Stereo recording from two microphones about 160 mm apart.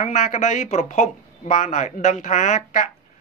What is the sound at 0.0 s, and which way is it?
Speech, 50° left (ahead or behind).